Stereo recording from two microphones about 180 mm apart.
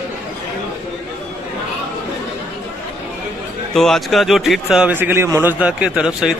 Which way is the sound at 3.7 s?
Centre (ahead or behind).